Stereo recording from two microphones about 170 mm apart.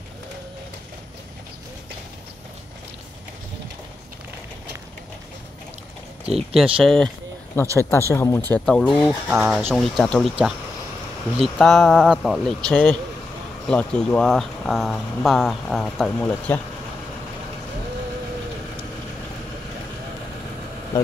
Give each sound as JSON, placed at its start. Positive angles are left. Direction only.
{"t": 6.2, "sound": "speech", "side_deg": -5}
{"t": 7.7, "sound": "speech", "side_deg": 15}
{"t": 8.5, "sound": "speech", "side_deg": 5}
{"t": 11.3, "sound": "speech", "side_deg": 0}